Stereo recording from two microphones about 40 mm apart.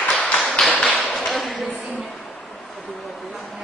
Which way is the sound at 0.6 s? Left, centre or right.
Centre.